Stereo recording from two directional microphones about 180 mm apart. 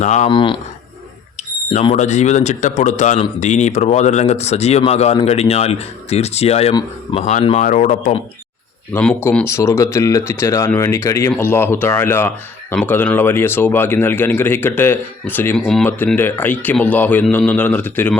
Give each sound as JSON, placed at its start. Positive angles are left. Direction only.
{"t": 0.0, "sound": "speech", "side_deg": 40}
{"t": 0.3, "sound": "speech", "side_deg": 25}
{"t": 1.8, "sound": "speech", "side_deg": 35}
{"t": 8.9, "sound": "speech", "side_deg": 10}